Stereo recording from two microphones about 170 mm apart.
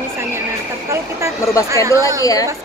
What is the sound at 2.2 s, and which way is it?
Speech, 20° left (ahead or behind).